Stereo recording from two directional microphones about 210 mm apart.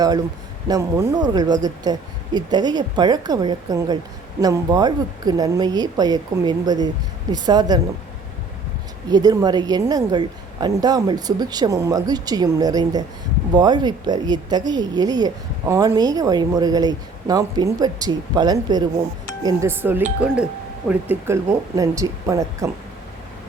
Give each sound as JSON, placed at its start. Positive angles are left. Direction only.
{"t": 0.7, "sound": "speech", "side_deg": -10}
{"t": 9.0, "sound": "speech", "side_deg": -20}